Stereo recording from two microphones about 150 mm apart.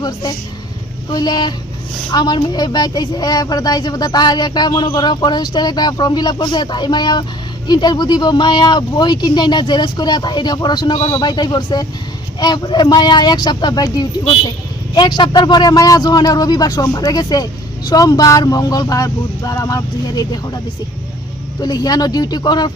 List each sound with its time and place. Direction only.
0.0 s speech: 25° left (ahead or behind)
21.6 s speech: 25° left (ahead or behind)